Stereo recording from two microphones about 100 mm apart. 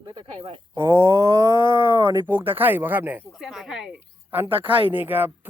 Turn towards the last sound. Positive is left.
turn(degrees=-20)  # may be behind; listen again after turning